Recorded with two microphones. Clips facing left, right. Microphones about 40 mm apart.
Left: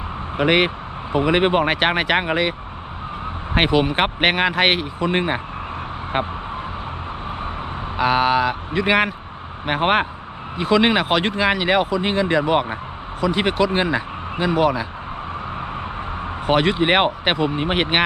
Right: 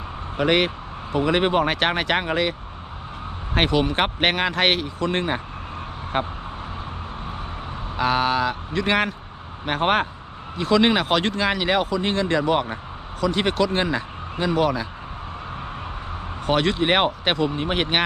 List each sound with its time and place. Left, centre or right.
0.3 s speech: centre
7.9 s speech: centre
16.5 s speech: centre